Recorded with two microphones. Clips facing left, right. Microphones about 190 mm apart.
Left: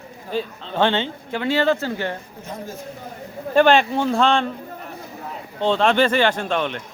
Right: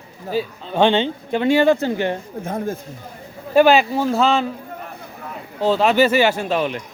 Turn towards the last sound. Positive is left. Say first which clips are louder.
# right 2 dB
turn(degrees=-5)  # may be behind; listen again after turning